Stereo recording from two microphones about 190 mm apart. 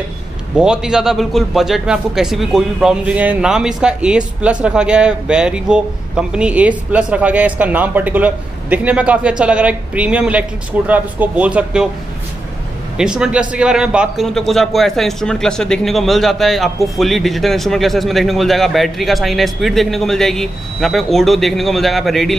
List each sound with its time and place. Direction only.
0.6 s a man's voice: 5° right (ahead or behind)
12.9 s a man's voice: 5° right (ahead or behind)